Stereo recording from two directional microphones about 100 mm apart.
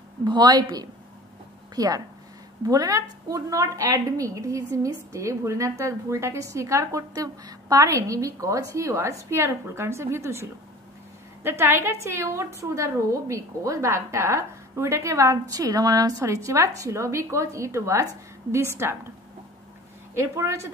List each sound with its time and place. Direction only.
0.2 s a woman's voice: 45° right (ahead or behind); by 10.4 s 25° right (ahead or behind)
11.4 s a woman's voice: 25° right (ahead or behind)
20.2 s a woman's voice: 30° right (ahead or behind)